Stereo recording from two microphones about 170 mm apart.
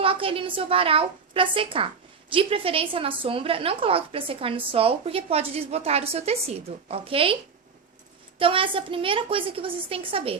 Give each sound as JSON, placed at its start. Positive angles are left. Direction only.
{"t": 0.0, "sound": "a woman's voice", "side_deg": -30}
{"t": 8.4, "sound": "a woman's voice", "side_deg": -30}